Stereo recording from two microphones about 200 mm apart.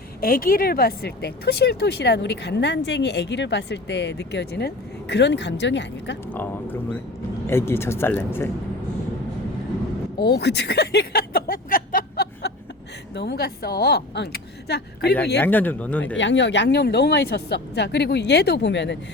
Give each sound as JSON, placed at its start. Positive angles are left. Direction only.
{"t": 0.2, "sound": "a woman's voice", "side_deg": 45}
{"t": 6.3, "sound": "speech", "side_deg": 10}
{"t": 10.2, "sound": "a woman's voice", "side_deg": 55}
{"t": 15.4, "sound": "speech", "side_deg": 10}
{"t": 16.1, "sound": "a woman's voice", "side_deg": 65}